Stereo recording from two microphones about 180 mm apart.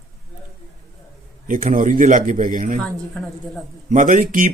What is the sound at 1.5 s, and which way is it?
Speech, 50° right (ahead or behind).